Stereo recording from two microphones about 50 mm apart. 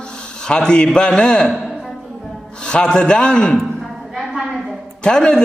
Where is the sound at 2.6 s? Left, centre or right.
Centre.